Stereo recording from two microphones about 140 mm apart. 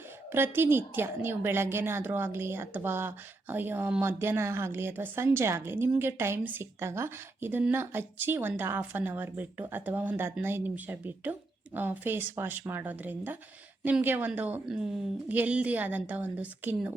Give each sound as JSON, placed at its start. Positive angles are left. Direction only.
{"t": 0.3, "sound": "a woman's voice", "side_deg": -15}